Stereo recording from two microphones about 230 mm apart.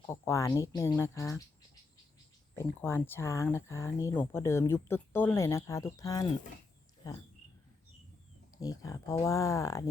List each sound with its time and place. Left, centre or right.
0.0 s speech: centre
2.6 s speech: centre
8.6 s speech: centre